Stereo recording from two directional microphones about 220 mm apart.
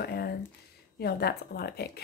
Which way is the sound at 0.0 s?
45° left (ahead or behind).